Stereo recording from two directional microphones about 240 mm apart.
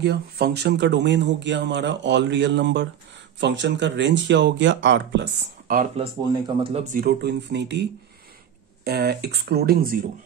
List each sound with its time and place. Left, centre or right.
0.0 s speech: right
6.4 s speech: right
8.8 s speech: right